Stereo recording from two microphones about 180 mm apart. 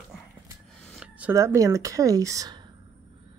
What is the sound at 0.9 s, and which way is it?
Speech, 5° right (ahead or behind).